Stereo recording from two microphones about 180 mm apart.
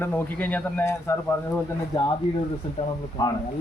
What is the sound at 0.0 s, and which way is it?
Speech, 10° left (ahead or behind).